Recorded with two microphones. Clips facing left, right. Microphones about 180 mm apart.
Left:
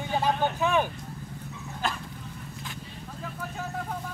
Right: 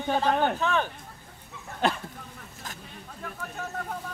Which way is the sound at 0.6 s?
10° left (ahead or behind).